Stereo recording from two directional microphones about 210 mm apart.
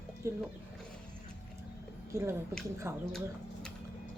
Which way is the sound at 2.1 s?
10° right (ahead or behind).